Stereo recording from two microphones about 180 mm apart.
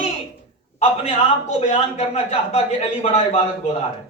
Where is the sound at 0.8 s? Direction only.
35° left (ahead or behind).